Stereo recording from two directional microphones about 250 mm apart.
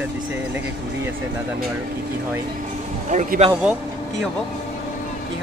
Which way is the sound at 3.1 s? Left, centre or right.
Right.